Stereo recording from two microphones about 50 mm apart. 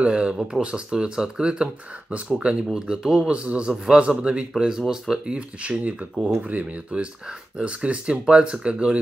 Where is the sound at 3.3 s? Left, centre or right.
Right.